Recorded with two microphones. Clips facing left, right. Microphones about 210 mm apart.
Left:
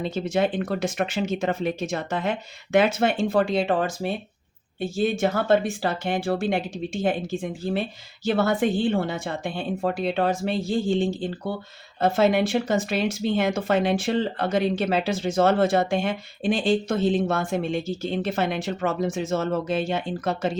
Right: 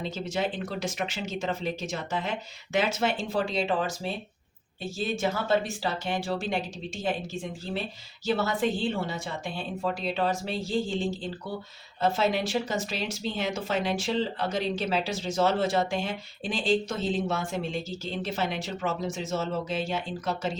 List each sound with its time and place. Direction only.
0.0 s speech: 55° left (ahead or behind)
5.2 s speech: 55° left (ahead or behind)
11.9 s speech: 55° left (ahead or behind)